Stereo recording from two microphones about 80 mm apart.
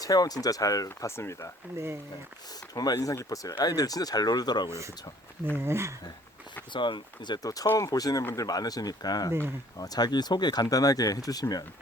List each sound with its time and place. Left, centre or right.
0.0 s speech: left
0.9 s speech: left
2.7 s speech: left
5.5 s speech: right
6.7 s speech: left
7.4 s speech: left